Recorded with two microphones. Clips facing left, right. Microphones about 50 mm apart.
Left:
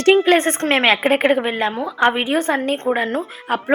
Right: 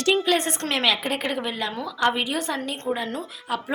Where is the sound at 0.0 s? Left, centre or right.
Left.